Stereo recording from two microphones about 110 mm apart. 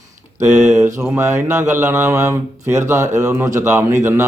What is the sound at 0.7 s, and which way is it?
Speech, 20° right (ahead or behind).